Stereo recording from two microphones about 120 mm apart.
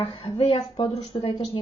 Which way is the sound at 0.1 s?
40° left (ahead or behind).